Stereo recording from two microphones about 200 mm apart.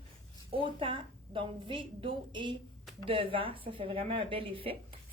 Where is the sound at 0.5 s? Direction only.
25° right (ahead or behind).